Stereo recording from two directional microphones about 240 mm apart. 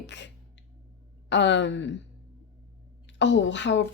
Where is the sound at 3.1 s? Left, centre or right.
Left.